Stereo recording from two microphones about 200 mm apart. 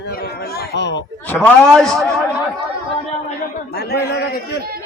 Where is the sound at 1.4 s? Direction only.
5° left (ahead or behind).